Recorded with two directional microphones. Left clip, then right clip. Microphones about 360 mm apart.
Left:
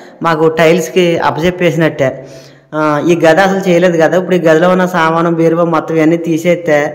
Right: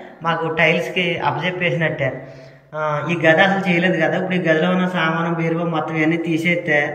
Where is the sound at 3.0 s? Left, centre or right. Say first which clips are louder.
Left 6 dB; centre.